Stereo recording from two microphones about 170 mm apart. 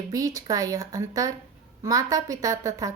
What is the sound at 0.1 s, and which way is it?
Speech, 20° right (ahead or behind).